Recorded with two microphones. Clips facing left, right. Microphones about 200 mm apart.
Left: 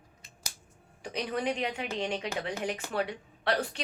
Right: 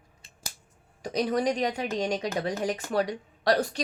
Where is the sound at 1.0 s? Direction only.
40° right (ahead or behind).